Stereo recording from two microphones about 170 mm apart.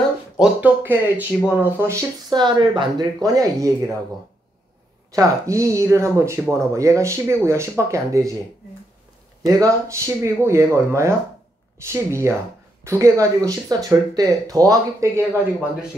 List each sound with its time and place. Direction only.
0.4 s speech: 10° right (ahead or behind)
5.1 s speech: 20° right (ahead or behind)
9.4 s speech: 20° right (ahead or behind)